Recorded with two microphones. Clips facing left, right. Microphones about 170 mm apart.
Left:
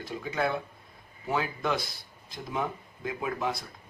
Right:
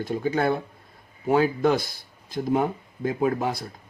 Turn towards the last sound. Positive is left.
turn(degrees=-50)  # may be behind; listen again after turning